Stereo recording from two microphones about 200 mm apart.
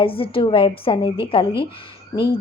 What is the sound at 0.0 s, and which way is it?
A woman's voice, 25° left (ahead or behind).